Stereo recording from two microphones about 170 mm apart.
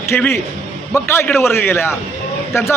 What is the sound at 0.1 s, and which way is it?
A man's voice, 10° left (ahead or behind).